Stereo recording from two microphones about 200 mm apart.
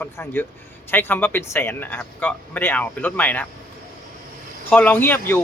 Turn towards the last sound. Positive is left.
turn(degrees=10)  # may be behind; listen again after turning